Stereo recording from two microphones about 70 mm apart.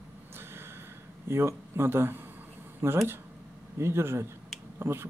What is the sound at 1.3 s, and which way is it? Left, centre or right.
Speech, right.